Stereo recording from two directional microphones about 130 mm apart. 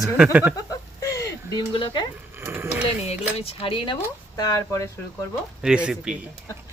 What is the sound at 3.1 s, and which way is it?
Speech, 50° left (ahead or behind).